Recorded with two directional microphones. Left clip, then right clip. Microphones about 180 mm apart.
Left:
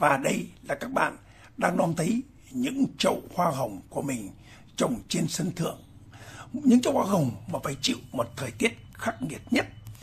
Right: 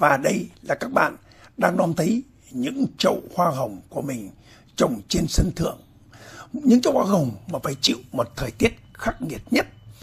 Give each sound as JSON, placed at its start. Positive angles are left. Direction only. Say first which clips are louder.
{"t": 0.0, "sound": "speech", "louder": "right 5 dB", "side_deg": -25}